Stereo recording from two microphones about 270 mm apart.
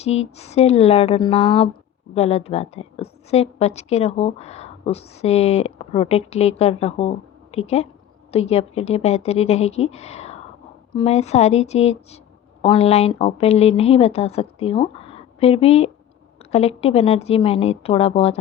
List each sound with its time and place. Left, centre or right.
0.0 s a woman's voice: left